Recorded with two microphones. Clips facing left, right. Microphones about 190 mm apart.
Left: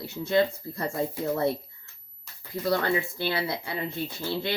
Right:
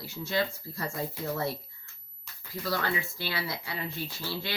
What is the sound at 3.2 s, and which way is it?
Speech, 55° left (ahead or behind).